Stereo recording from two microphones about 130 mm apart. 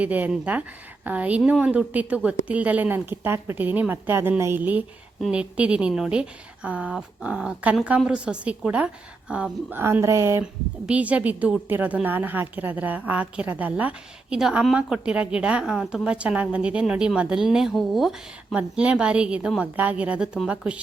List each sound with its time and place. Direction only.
0.0 s a woman's voice: 10° right (ahead or behind)
10.4 s a woman's voice: 10° right (ahead or behind)